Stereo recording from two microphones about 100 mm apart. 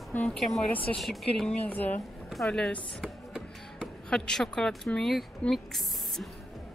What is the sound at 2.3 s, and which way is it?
Speech, 5° left (ahead or behind).